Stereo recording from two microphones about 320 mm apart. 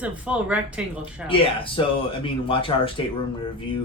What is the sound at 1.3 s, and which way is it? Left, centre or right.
Speech, centre.